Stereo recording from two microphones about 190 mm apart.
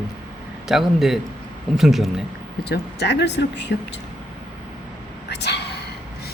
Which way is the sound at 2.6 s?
60° left (ahead or behind).